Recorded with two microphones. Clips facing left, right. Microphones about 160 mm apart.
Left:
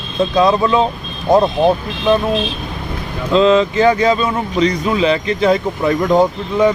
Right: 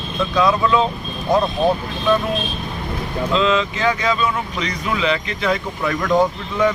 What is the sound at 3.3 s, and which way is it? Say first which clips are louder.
Speech: left 9 dB; 35° left (ahead or behind).